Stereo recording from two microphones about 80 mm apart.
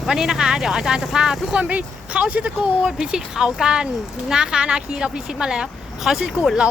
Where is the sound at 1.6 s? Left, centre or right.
Centre.